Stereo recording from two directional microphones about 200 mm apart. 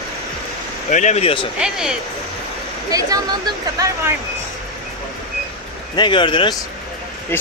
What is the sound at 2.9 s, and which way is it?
Speech, 20° right (ahead or behind).